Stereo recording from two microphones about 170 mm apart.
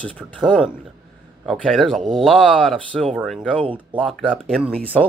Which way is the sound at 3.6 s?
30° right (ahead or behind).